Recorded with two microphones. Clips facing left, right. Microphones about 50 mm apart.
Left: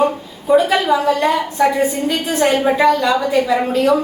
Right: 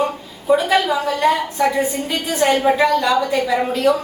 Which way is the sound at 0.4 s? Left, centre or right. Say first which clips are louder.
Left 2 dB; centre.